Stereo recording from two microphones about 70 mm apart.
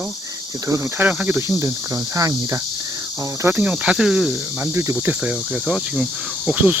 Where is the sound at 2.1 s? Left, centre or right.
Right.